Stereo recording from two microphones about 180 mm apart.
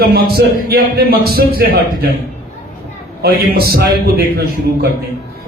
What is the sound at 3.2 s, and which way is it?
Speech, 55° right (ahead or behind).